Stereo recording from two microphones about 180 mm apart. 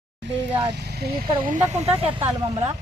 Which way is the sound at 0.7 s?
65° right (ahead or behind).